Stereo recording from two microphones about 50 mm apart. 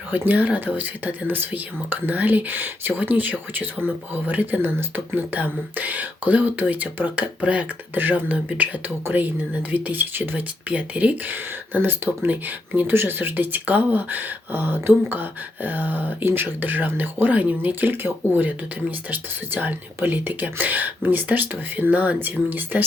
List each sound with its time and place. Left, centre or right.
0.1 s speech: right